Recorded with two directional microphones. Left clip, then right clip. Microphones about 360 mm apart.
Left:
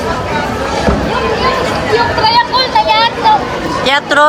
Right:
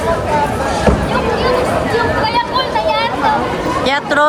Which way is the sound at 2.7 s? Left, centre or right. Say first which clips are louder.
Left 7 dB; left.